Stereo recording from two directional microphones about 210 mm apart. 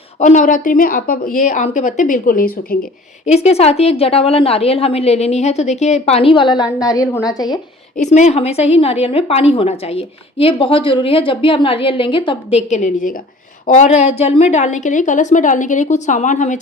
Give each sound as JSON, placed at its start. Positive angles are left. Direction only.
{"t": 0.2, "sound": "a woman's voice", "side_deg": 35}
{"t": 3.2, "sound": "a woman's voice", "side_deg": 30}
{"t": 7.9, "sound": "a woman's voice", "side_deg": 35}